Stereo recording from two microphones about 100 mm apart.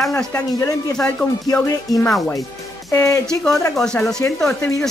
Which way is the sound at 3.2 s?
5° left (ahead or behind).